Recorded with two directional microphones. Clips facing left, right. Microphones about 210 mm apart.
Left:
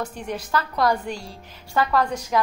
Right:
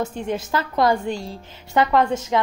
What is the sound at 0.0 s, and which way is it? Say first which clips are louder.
A woman's voice: right 5 dB; 25° right (ahead or behind).